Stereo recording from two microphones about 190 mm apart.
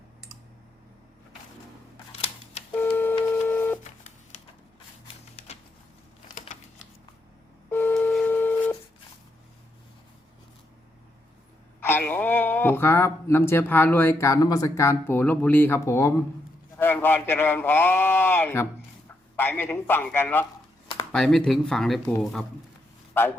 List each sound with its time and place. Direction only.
2.7 s printer: 10° left (ahead or behind)
5.4 s a sound: 30° left (ahead or behind)
7.7 s telephone dialing: 10° left (ahead or behind)
11.8 s a man's voice: 10° left (ahead or behind)